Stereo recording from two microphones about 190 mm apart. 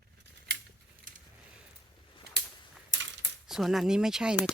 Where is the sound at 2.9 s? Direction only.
75° right (ahead or behind).